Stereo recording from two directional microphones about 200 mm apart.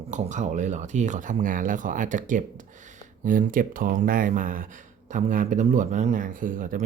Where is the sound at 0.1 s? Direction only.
35° right (ahead or behind).